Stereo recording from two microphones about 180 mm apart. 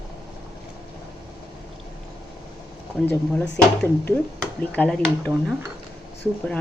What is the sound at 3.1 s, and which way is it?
A woman's voice, 5° left (ahead or behind).